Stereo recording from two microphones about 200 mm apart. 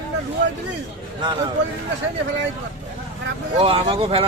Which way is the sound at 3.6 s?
30° right (ahead or behind).